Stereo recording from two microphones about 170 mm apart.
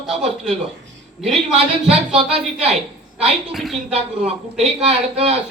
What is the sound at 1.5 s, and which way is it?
Speech, 35° right (ahead or behind).